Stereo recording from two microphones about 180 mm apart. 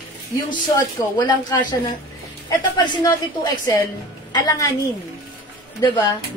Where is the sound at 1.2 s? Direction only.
25° left (ahead or behind).